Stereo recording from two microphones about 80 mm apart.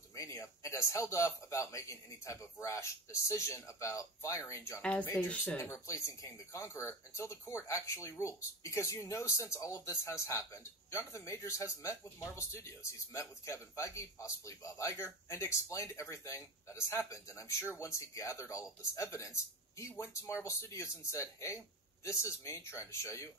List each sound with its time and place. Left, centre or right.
0.1 s speech: left
4.8 s speech: centre
5.7 s speech: left